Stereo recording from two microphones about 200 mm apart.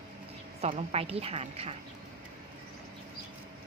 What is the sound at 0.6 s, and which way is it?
A woman's voice, 30° right (ahead or behind).